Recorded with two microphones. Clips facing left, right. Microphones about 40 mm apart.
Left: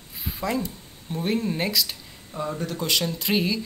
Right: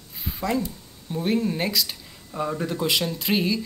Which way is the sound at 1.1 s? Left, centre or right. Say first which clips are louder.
Right 2 dB; centre.